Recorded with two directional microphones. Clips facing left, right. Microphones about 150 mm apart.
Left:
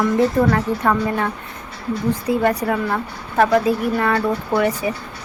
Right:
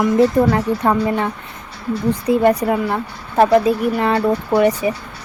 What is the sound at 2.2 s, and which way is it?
Speech, 20° right (ahead or behind).